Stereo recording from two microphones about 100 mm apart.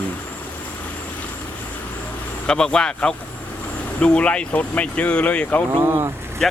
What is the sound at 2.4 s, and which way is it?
Speech, 5° left (ahead or behind).